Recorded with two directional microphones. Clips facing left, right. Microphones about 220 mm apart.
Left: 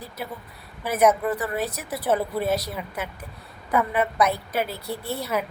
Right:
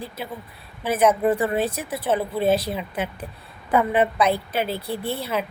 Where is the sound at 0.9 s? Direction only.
30° right (ahead or behind).